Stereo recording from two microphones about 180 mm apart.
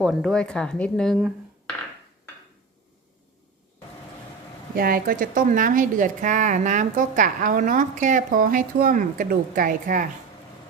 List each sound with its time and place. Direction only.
0.0 s speech: centre (ahead or behind)
4.7 s a woman's voice: 55° right (ahead or behind)